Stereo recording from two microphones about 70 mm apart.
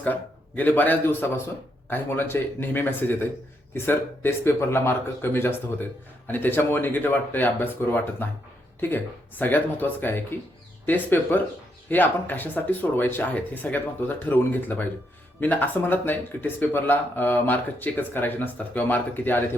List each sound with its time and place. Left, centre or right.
0.0 s a man's voice: left
9.4 s speech: left